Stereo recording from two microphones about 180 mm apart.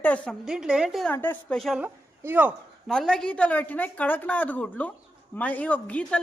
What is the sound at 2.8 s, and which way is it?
A woman's voice, centre (ahead or behind).